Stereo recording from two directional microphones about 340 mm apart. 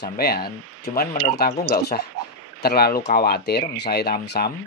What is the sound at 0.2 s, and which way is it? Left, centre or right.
Speech, left.